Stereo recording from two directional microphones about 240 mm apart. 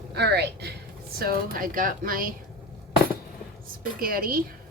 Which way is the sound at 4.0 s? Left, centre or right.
Right.